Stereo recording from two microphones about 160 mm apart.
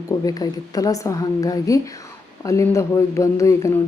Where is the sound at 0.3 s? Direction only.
20° left (ahead or behind).